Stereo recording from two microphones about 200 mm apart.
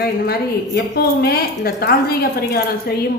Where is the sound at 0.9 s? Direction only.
50° left (ahead or behind).